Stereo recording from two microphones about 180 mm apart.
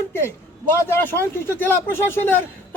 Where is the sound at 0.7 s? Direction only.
15° left (ahead or behind).